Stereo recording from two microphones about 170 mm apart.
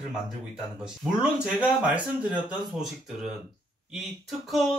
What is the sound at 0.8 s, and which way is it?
Speech, 5° right (ahead or behind).